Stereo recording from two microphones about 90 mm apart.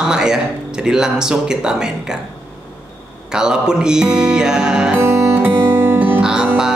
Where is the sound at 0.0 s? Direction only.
5° right (ahead or behind).